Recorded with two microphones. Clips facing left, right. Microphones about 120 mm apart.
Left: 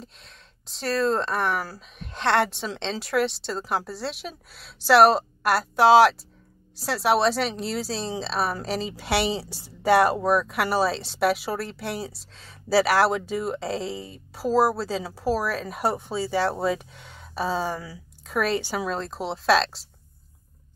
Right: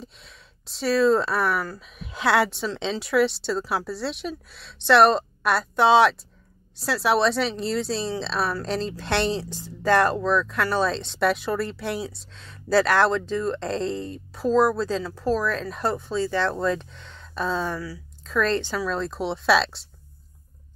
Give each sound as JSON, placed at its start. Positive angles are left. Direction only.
{"t": 0.0, "sound": "speech", "side_deg": 0}
{"t": 17.7, "sound": "speech", "side_deg": 25}
{"t": 18.2, "sound": "speech", "side_deg": 10}